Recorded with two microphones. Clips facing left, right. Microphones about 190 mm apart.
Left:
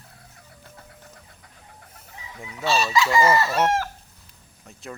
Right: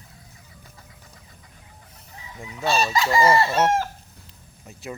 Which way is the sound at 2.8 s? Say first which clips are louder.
Even; 35° right (ahead or behind).